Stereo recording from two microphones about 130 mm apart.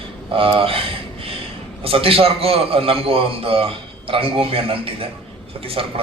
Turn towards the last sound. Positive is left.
turn(degrees=-45)  # may be behind; listen again after turning